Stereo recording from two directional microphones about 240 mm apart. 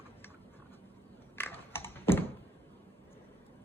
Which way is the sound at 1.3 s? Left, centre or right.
Centre.